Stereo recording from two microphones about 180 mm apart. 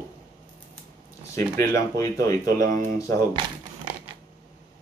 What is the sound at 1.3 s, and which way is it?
Speech, 15° left (ahead or behind).